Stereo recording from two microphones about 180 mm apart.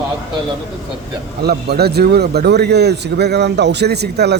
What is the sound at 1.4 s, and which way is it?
A man's voice, 65° right (ahead or behind).